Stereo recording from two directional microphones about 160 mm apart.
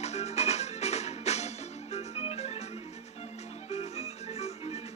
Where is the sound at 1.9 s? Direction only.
40° left (ahead or behind).